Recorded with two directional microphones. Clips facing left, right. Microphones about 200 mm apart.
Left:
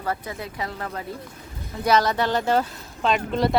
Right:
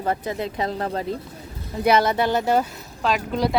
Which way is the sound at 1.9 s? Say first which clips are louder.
Right 1 dB; 10° right (ahead or behind).